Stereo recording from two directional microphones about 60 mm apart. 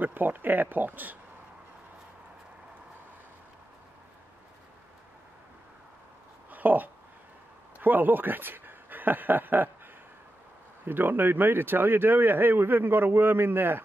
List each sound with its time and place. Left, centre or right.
0.0 s speech: right
6.5 s a sound: right
7.8 s speech: right
10.9 s speech: right